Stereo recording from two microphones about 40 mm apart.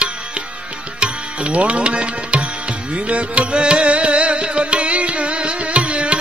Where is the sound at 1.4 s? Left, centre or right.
Right.